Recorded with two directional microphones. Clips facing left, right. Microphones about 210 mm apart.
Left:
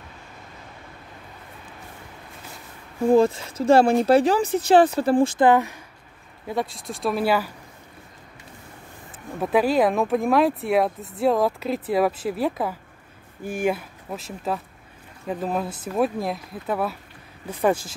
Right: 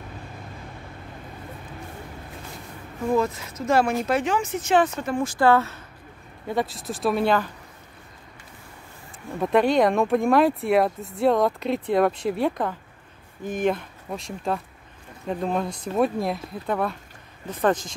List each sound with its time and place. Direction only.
3.1 s speech: 30° left (ahead or behind)
6.4 s speech: centre (ahead or behind)
9.4 s speech: 5° left (ahead or behind)